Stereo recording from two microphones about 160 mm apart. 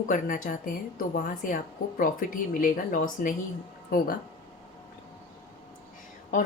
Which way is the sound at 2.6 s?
60° left (ahead or behind).